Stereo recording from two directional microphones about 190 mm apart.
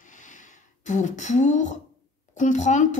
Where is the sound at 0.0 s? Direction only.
40° left (ahead or behind).